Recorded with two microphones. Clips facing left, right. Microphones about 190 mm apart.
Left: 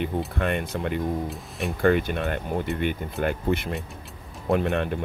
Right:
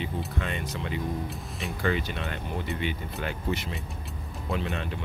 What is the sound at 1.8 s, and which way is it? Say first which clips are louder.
Speech: left 8 dB; 55° left (ahead or behind).